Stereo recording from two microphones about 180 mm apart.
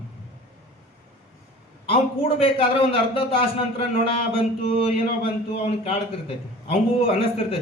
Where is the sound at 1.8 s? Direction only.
30° left (ahead or behind).